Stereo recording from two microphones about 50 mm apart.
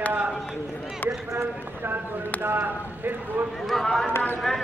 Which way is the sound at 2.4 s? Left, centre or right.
Right.